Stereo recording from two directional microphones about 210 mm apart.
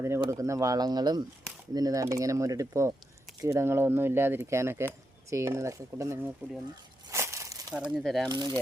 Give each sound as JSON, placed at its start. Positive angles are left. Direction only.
{"t": 0.3, "sound": "speech", "side_deg": -15}
{"t": 7.1, "sound": "a sound", "side_deg": -15}
{"t": 7.7, "sound": "speech", "side_deg": -5}
{"t": 8.3, "sound": "speech", "side_deg": -20}